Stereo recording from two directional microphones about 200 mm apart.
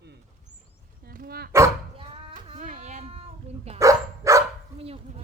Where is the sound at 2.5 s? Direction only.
40° right (ahead or behind).